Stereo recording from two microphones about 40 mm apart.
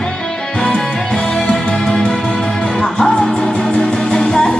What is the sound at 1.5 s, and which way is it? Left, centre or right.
Music, centre.